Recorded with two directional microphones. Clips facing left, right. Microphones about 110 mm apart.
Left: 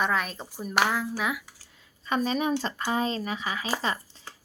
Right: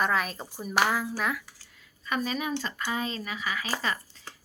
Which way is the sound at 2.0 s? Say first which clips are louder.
Left 4 dB; 30° left (ahead or behind).